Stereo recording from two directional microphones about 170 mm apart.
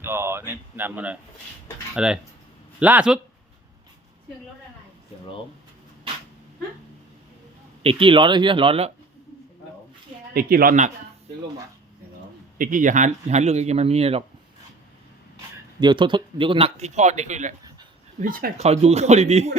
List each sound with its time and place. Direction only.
0.0 s speech: 15° right (ahead or behind)
7.8 s speech: 35° right (ahead or behind)
10.3 s speech: 60° right (ahead or behind)
12.5 s speech: 50° right (ahead or behind); by 14.3 s 35° right (ahead or behind)
15.8 s speech: 25° right (ahead or behind); by 17.5 s 45° right (ahead or behind)
18.2 s speech: 55° right (ahead or behind)
18.5 s speech: 40° right (ahead or behind)